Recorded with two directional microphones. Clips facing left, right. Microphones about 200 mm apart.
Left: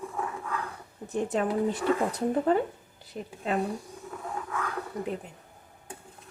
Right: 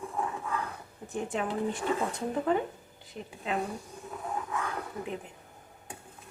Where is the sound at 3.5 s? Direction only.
45° left (ahead or behind).